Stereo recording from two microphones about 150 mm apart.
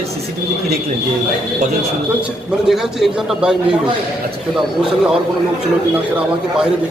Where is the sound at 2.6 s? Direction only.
5° right (ahead or behind).